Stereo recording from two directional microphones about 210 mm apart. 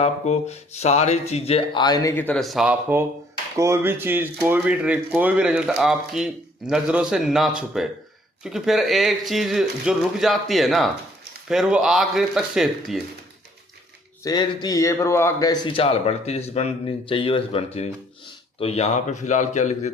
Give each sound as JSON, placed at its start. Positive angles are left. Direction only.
{"t": 0.0, "sound": "a man's voice", "side_deg": 30}
{"t": 14.3, "sound": "a man's voice", "side_deg": 20}
{"t": 18.6, "sound": "speech", "side_deg": 30}